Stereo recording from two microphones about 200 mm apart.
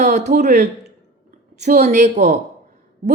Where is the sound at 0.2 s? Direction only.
55° right (ahead or behind).